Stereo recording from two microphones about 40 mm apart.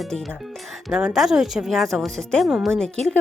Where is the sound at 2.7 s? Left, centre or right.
Centre.